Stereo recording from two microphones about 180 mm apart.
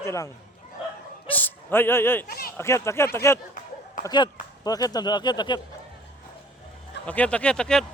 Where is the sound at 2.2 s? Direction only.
55° left (ahead or behind).